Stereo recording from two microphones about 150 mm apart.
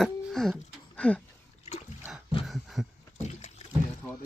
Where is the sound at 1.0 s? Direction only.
10° left (ahead or behind).